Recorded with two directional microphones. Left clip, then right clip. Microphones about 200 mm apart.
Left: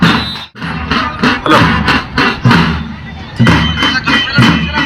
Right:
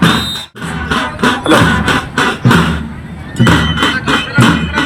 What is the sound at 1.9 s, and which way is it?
Beatboxing, 10° right (ahead or behind).